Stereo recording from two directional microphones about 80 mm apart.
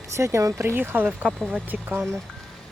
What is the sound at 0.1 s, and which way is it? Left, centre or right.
Speech, right.